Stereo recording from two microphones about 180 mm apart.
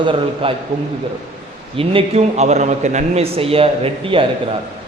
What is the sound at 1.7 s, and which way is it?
A man's voice, 35° right (ahead or behind).